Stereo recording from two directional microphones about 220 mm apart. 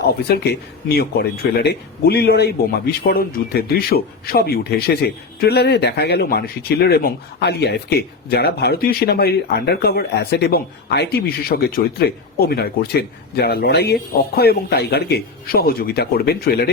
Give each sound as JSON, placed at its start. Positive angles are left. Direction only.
{"t": 0.1, "sound": "a man's voice", "side_deg": 45}